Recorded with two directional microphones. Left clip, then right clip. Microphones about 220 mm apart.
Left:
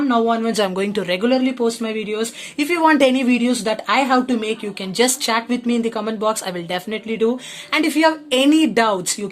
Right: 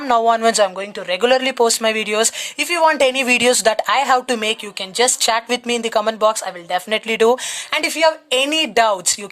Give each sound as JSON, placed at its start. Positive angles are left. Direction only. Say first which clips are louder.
{"t": 0.1, "sound": "speech", "louder": "right 8 dB", "side_deg": -40}
{"t": 0.8, "sound": "speech", "louder": "left 2 dB", "side_deg": -5}
{"t": 1.2, "sound": "speech", "louder": "right 6 dB", "side_deg": -35}
{"t": 2.6, "sound": "speech", "louder": "even", "side_deg": -20}
{"t": 6.9, "sound": "speech", "louder": "right 6 dB", "side_deg": -35}
{"t": 7.7, "sound": "speech", "louder": "even", "side_deg": -20}